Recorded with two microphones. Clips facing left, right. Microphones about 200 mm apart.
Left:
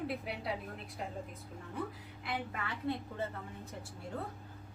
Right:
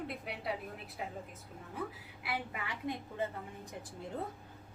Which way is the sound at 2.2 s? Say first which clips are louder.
Left 1 dB; 10° right (ahead or behind).